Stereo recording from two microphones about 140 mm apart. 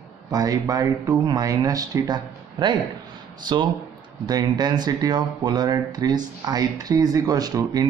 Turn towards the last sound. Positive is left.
turn(degrees=-25)  # may be behind; listen again after turning